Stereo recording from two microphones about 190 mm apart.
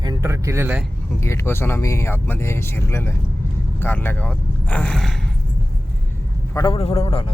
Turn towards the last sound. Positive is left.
turn(degrees=30)  # may be behind; listen again after turning